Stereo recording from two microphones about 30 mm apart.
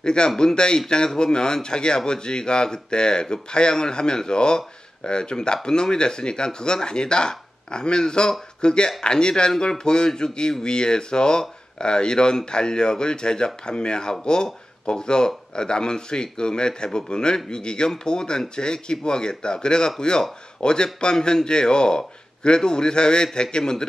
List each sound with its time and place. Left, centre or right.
0.0 s speech: left